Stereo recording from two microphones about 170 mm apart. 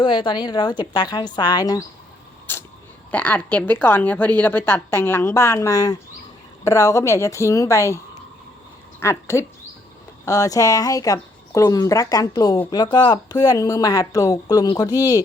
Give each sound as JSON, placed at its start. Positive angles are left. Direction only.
{"t": 0.0, "sound": "speech", "side_deg": 30}
{"t": 3.1, "sound": "a woman's voice", "side_deg": 10}